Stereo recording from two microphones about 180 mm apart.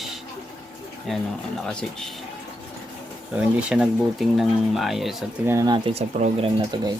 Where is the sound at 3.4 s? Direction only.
5° right (ahead or behind).